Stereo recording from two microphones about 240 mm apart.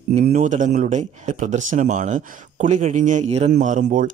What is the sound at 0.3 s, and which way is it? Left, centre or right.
Speech, right.